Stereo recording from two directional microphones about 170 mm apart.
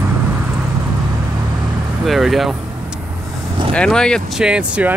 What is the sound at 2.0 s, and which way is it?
Vehicle, centre (ahead or behind).